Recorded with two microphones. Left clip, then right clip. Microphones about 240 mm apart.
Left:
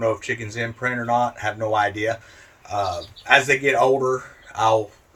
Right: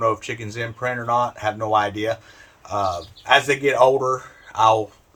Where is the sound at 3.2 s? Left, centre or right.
Centre.